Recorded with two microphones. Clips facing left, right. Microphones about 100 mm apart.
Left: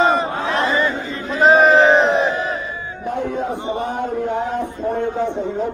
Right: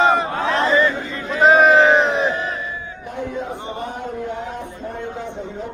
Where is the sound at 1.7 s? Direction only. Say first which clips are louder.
Left 1 dB; 20° left (ahead or behind).